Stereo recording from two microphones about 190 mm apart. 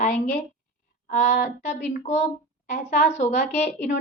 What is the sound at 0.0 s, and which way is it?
Speech, 40° left (ahead or behind).